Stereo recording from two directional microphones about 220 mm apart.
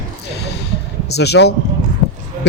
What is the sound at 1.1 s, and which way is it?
Speech, 50° left (ahead or behind).